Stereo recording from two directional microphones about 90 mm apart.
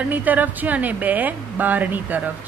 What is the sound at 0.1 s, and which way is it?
A woman's voice, 20° right (ahead or behind).